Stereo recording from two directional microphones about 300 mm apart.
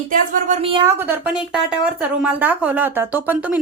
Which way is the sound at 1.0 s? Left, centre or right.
Centre.